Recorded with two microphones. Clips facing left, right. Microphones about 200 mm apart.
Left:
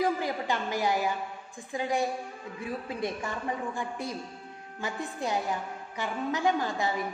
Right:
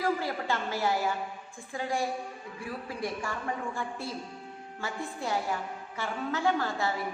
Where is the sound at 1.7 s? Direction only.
20° left (ahead or behind).